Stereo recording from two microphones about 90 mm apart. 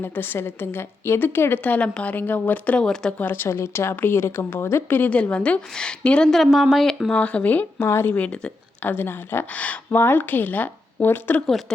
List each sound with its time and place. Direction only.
0.0 s a woman's voice: 25° left (ahead or behind); by 3.2 s 10° left (ahead or behind)
3.2 s speech: 25° left (ahead or behind); by 7.1 s centre (ahead or behind)
7.1 s speech: 15° left (ahead or behind)
7.9 s a woman's voice: 30° left (ahead or behind)
8.1 s speech: 15° left (ahead or behind)
8.8 s a woman's voice: 20° left (ahead or behind)